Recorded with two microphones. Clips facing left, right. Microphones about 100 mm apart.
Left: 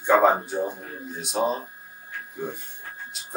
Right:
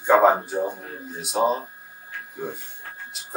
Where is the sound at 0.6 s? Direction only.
15° right (ahead or behind).